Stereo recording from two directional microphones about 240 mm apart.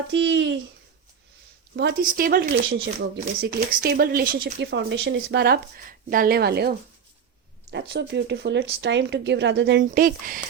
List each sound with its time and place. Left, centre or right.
0.1 s speech: right
1.7 s speech: right
9.8 s speech: right